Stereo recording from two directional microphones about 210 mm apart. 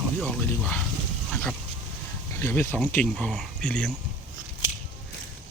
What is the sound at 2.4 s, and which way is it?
Speech, 10° left (ahead or behind).